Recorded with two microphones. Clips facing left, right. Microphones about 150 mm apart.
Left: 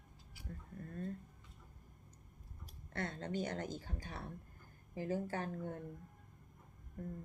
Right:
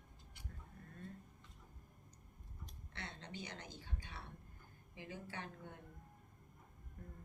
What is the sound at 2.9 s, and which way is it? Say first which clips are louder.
A woman's voice: left 10 dB; 45° left (ahead or behind).